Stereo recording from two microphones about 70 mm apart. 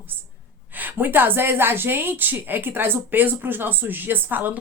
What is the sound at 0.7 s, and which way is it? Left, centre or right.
Speech, right.